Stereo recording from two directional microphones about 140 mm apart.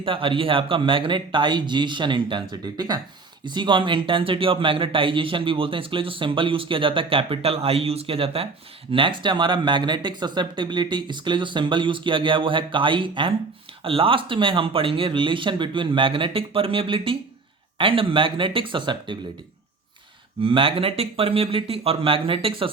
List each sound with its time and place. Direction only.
0.0 s speech: 40° right (ahead or behind)
20.4 s speech: 40° right (ahead or behind)